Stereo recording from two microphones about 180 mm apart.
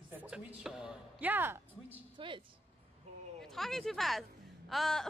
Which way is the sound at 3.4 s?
Centre (ahead or behind).